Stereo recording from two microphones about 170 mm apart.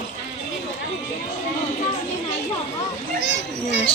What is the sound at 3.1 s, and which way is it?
Children playing, 90° left.